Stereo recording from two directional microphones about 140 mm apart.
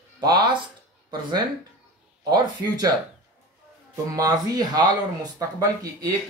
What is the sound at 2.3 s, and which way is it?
Speech, 30° right (ahead or behind).